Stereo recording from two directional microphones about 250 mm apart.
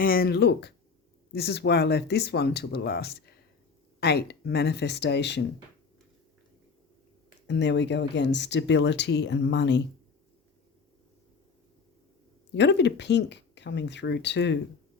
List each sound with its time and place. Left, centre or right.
0.0 s speech: left
7.4 s speech: left
12.5 s speech: left